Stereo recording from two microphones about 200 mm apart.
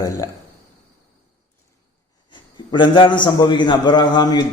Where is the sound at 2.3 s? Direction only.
25° left (ahead or behind).